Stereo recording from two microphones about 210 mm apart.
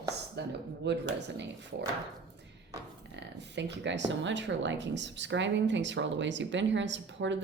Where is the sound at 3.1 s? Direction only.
55° right (ahead or behind).